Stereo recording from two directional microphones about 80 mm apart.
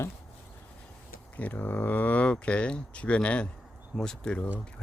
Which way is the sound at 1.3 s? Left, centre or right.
Left.